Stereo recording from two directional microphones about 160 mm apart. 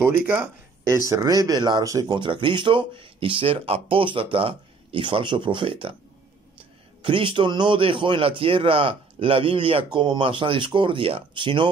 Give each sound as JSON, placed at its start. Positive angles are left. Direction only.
{"t": 0.3, "sound": "speech", "side_deg": -10}
{"t": 1.0, "sound": "speech", "side_deg": -20}
{"t": 7.0, "sound": "speech", "side_deg": -30}